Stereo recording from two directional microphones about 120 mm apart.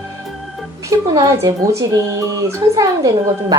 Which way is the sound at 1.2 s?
25° right (ahead or behind).